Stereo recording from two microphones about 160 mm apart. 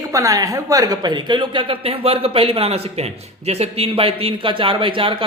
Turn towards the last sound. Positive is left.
turn(degrees=-35)  # may be behind; listen again after turning